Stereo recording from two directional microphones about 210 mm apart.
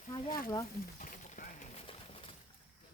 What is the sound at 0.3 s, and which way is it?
Speech, 45° left (ahead or behind).